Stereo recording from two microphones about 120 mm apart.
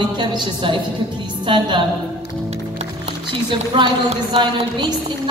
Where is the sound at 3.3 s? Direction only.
40° right (ahead or behind).